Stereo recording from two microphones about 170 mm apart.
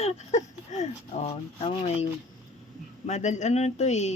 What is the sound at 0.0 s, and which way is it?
Speech, 40° left (ahead or behind).